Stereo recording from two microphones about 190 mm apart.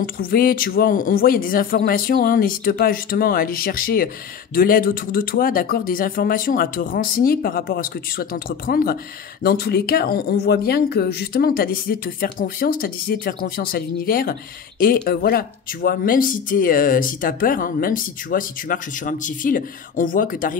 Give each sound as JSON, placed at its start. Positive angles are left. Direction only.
{"t": 0.0, "sound": "speech", "side_deg": 50}